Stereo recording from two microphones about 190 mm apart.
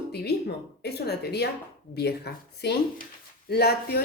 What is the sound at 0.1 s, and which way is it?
Speech, 60° left (ahead or behind).